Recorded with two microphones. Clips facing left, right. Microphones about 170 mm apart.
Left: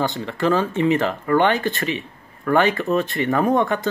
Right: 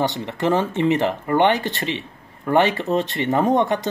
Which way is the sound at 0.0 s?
20° right (ahead or behind).